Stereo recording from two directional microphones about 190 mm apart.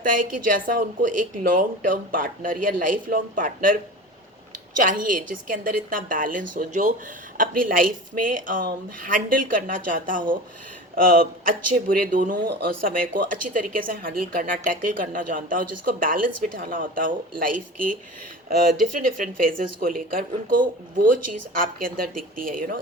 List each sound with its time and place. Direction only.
0.0 s a woman's voice: 45° right (ahead or behind)
4.8 s a woman's voice: 45° right (ahead or behind)
18.9 s a woman's voice: 45° right (ahead or behind)